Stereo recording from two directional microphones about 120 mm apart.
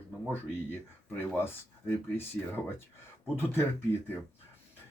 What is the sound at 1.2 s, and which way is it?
Speech, 20° left (ahead or behind).